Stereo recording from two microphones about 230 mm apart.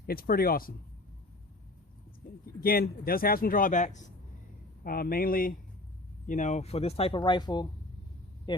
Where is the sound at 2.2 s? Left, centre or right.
Left.